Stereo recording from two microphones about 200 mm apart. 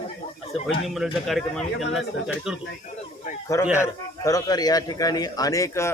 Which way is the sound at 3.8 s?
15° left (ahead or behind).